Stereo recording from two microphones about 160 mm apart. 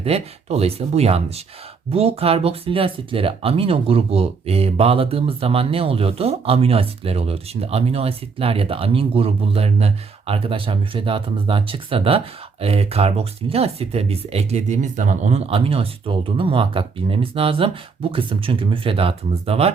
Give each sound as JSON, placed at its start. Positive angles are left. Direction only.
{"t": 0.0, "sound": "speech", "side_deg": -40}